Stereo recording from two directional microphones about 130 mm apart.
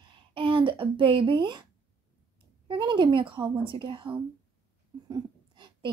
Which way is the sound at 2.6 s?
40° right (ahead or behind).